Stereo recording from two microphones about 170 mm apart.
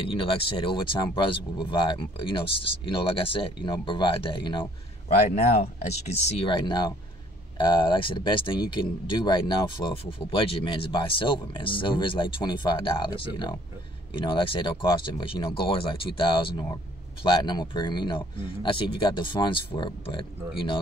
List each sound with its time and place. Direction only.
0.0 s speech: 30° left (ahead or behind)
5.0 s speech: 40° left (ahead or behind)